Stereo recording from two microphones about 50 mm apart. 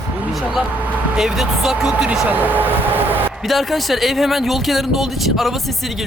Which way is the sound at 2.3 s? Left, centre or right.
Right.